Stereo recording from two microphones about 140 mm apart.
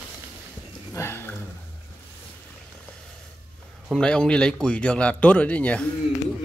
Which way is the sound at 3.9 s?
5° left (ahead or behind).